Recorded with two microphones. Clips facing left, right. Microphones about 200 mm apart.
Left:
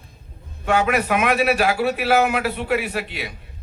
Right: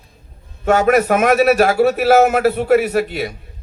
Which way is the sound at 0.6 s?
45° right (ahead or behind).